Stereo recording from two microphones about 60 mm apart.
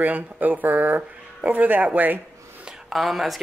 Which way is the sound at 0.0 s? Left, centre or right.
Right.